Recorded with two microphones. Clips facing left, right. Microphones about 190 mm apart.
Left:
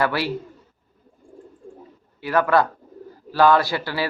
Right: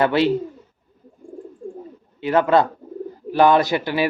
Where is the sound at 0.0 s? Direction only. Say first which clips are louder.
Right 6 dB; 20° right (ahead or behind).